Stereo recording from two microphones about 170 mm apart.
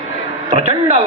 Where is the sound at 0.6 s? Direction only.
40° right (ahead or behind).